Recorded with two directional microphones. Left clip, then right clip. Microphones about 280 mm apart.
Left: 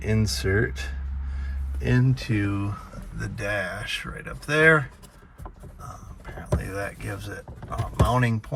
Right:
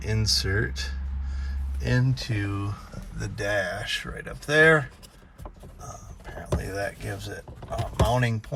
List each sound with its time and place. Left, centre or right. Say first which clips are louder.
0.0 s speech: right 1 dB; centre